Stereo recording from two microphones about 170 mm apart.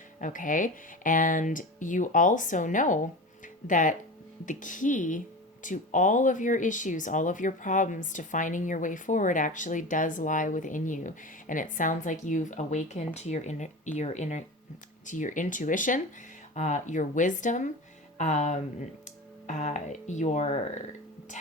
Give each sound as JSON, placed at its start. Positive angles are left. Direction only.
{"t": 0.2, "sound": "speech", "side_deg": 50}